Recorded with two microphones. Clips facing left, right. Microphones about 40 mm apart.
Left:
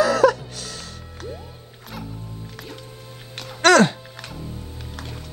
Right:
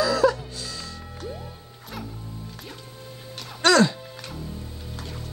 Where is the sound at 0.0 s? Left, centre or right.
Left.